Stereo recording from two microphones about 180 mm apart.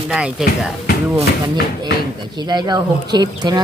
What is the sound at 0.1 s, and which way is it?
Speech, 5° right (ahead or behind).